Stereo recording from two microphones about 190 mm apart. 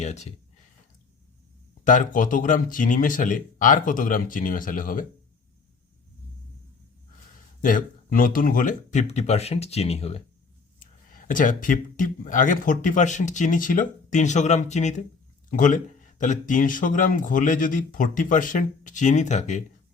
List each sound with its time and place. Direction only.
0.0 s speech: 35° left (ahead or behind)
1.8 s speech: 45° left (ahead or behind)
7.6 s speech: 45° left (ahead or behind)
10.8 s speech: 45° left (ahead or behind)